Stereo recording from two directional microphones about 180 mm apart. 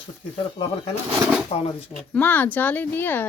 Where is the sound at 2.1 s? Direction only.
10° left (ahead or behind).